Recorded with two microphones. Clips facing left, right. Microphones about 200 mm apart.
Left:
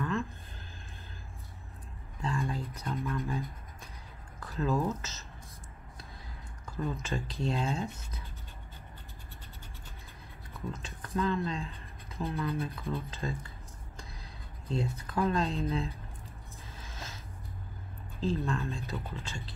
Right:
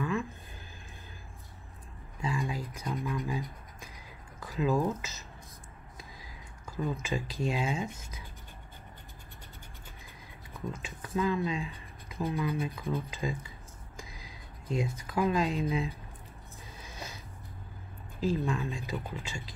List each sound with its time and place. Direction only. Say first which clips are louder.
0.0 s a sound: right 1 dB; 10° right (ahead or behind)
2.2 s a sound: even; 15° right (ahead or behind)
2.6 s music: even; 10° right (ahead or behind)
4.4 s speech: right 2 dB; 15° right (ahead or behind)
6.7 s speech: right 2 dB; 10° right (ahead or behind)
10.5 s speech: right 1 dB; 15° right (ahead or behind)
15.0 s speech: right 2 dB; 10° right (ahead or behind)
16.8 s a sound: right 2 dB; 15° right (ahead or behind)
18.2 s speech: right 2 dB; 15° right (ahead or behind)